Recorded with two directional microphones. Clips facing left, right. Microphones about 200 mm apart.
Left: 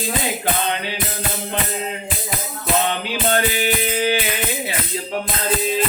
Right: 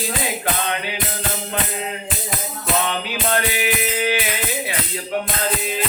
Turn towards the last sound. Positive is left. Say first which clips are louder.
# left 2 dB
turn(degrees=30)  # may be behind; listen again after turning